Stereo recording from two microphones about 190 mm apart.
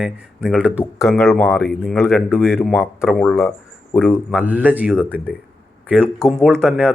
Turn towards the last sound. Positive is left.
turn(degrees=5)  # may be behind; listen again after turning